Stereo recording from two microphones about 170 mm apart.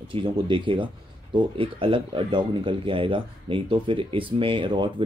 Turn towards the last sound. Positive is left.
turn(degrees=-30)  # may be behind; listen again after turning